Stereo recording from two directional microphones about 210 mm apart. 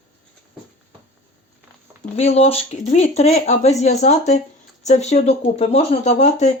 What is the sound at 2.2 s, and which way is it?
Speech, 30° left (ahead or behind).